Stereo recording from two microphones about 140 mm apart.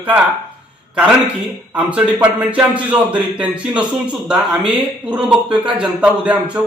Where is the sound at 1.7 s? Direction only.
10° right (ahead or behind).